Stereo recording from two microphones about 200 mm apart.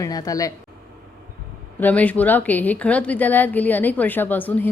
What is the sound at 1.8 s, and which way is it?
A woman's voice, 5° left (ahead or behind).